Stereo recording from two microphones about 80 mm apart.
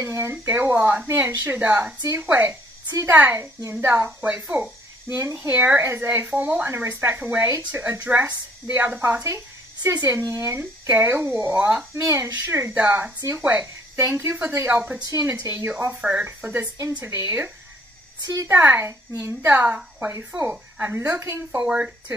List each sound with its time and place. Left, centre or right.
0.1 s speech: right
7.4 s speech: right
7.8 s speech: right
10.6 s speech: right
11.9 s speech: right
12.7 s speech: right
14.7 s speech: centre
15.0 s a woman's voice: right
15.6 s speech: right
18.2 s a woman's voice: right
18.5 s speech: right
21.5 s speech: centre